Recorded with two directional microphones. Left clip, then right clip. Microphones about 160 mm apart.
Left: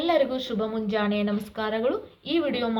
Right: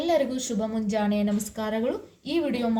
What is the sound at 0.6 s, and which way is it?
A woman's voice, 25° right (ahead or behind).